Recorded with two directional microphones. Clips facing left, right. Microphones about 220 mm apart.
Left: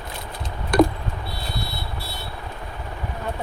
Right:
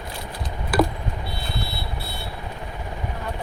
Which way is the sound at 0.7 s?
5° right (ahead or behind).